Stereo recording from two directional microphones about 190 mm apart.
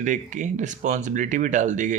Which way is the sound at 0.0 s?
40° right (ahead or behind).